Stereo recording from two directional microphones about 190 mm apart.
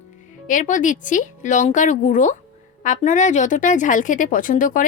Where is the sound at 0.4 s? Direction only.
40° left (ahead or behind).